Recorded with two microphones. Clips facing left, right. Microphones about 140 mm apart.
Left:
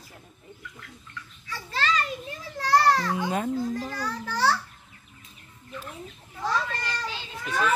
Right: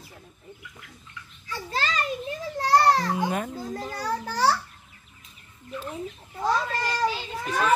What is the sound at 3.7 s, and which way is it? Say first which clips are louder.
Speech: right 1 dB; 35° right (ahead or behind).